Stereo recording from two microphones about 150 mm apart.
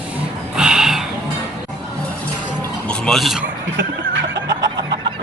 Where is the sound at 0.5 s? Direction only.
5° right (ahead or behind).